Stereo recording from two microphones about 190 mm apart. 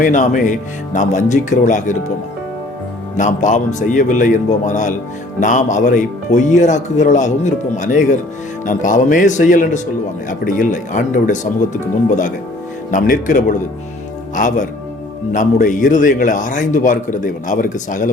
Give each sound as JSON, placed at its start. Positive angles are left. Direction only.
{"t": 0.0, "sound": "speech", "side_deg": 40}
{"t": 3.2, "sound": "speech", "side_deg": 40}